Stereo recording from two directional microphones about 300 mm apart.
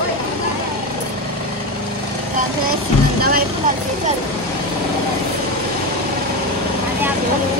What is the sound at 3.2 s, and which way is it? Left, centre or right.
Speech, right.